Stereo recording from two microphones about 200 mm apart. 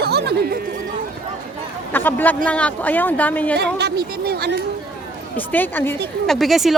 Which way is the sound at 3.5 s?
55° right (ahead or behind).